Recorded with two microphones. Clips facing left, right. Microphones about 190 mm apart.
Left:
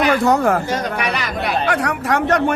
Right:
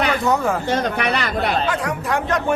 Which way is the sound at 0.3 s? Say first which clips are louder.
Left 4 dB; 70° left (ahead or behind).